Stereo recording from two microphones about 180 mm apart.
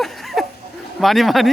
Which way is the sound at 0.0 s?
Centre (ahead or behind).